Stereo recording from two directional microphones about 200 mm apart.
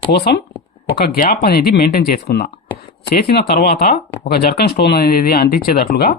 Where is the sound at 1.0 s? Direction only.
50° left (ahead or behind).